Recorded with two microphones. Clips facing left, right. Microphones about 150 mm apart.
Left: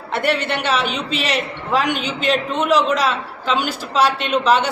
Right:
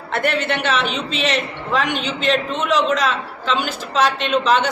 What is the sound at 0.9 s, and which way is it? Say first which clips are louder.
A man's voice: right 1 dB; 5° left (ahead or behind).